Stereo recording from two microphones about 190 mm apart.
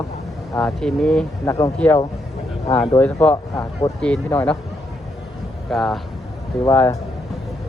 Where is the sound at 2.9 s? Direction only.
10° left (ahead or behind).